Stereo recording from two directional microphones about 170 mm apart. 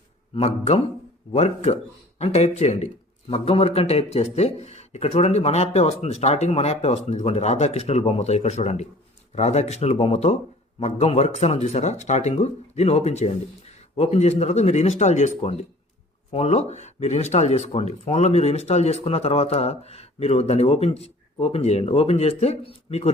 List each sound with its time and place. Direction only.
0.3 s speech: 40° left (ahead or behind)